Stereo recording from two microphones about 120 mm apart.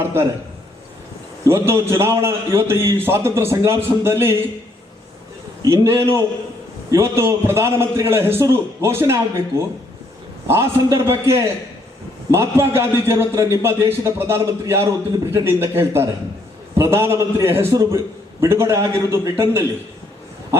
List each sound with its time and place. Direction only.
0.0 s a sound: 20° right (ahead or behind)
1.5 s a man's voice: 20° right (ahead or behind)
5.6 s a man's voice: 20° right (ahead or behind)